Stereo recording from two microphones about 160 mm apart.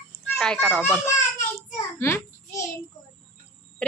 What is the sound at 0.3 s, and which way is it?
Speech, 5° left (ahead or behind).